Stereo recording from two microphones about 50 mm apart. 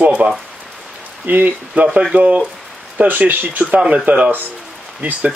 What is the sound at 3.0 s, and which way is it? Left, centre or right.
Speech, right.